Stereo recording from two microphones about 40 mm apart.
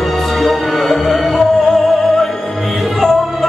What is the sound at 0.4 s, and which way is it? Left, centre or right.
Music, centre.